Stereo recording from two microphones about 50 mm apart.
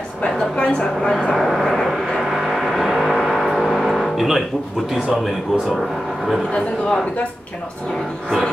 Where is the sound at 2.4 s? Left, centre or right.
Centre.